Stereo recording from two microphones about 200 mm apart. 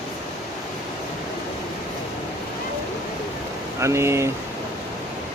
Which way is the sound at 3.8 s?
15° right (ahead or behind).